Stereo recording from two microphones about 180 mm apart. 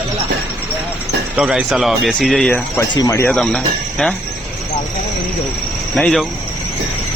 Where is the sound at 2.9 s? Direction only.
20° left (ahead or behind).